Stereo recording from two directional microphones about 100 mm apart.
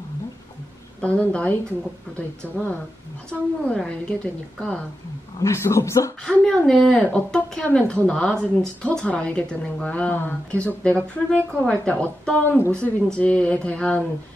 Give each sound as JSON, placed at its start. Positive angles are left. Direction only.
{"t": 1.0, "sound": "speech", "side_deg": 10}
{"t": 2.4, "sound": "speech", "side_deg": -15}
{"t": 3.3, "sound": "speech", "side_deg": 10}
{"t": 5.4, "sound": "speech", "side_deg": 30}
{"t": 6.2, "sound": "speech", "side_deg": 10}